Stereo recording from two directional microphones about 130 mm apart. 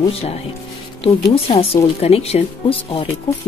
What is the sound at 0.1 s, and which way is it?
Speech, 50° left (ahead or behind).